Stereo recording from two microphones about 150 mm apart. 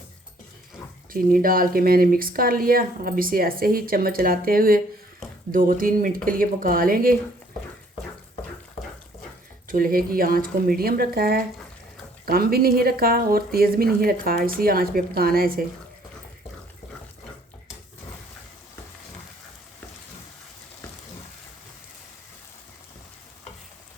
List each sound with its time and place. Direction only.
1.1 s speech: 70° right (ahead or behind)
9.6 s speech: 65° right (ahead or behind)